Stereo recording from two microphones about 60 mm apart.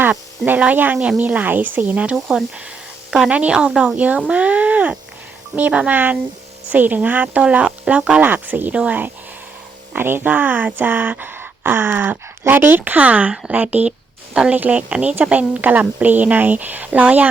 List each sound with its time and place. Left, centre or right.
0.6 s a woman's voice: right
0.9 s speech: centre
1.2 s a woman's voice: right
8.2 s a woman's voice: right